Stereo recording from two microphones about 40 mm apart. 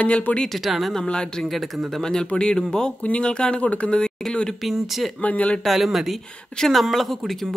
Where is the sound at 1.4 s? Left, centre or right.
Centre.